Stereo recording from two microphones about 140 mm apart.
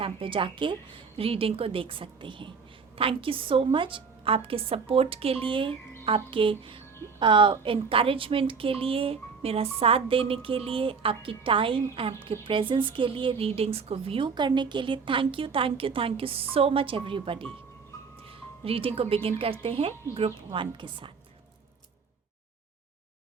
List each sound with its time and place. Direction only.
0.0 s speech: 40° right (ahead or behind)
18.6 s speech: 40° right (ahead or behind)